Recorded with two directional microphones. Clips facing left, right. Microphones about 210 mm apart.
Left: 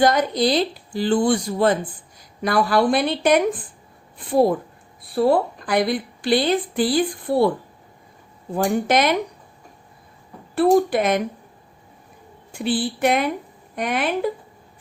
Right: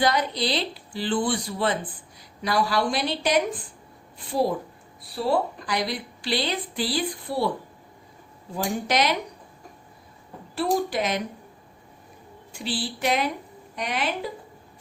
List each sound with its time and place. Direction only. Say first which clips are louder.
0.0 s a woman's voice: left 6 dB; 45° left (ahead or behind)
8.5 s a woman's voice: left 6 dB; 55° left (ahead or behind)
10.5 s a woman's voice: left 8 dB; 55° left (ahead or behind)
12.5 s a woman's voice: left 8 dB; 55° left (ahead or behind)